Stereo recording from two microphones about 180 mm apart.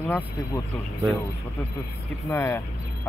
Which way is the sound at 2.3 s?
10° left (ahead or behind).